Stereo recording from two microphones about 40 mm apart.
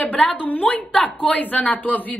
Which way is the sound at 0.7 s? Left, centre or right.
Left.